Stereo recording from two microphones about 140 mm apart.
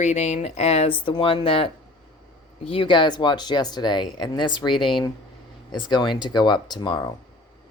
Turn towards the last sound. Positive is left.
turn(degrees=30)  # may be behind; listen again after turning